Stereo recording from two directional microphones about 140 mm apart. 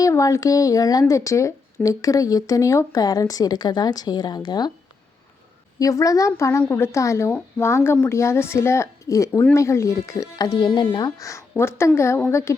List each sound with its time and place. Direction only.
0.0 s speech: 25° left (ahead or behind)
5.8 s a woman's voice: 25° left (ahead or behind)